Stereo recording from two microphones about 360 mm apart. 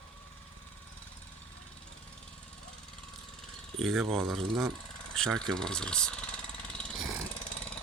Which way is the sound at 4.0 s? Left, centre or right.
Centre.